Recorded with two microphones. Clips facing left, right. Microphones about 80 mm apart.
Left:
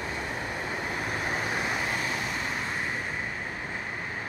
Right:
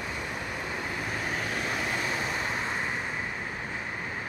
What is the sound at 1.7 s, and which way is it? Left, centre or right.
Vehicle, centre.